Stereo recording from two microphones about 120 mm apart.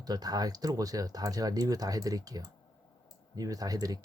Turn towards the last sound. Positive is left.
turn(degrees=-30)  # may be behind; listen again after turning